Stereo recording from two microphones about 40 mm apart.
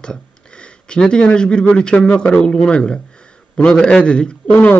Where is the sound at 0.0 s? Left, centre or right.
Left.